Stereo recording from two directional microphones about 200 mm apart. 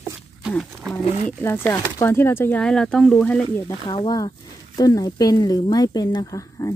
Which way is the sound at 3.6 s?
20° left (ahead or behind).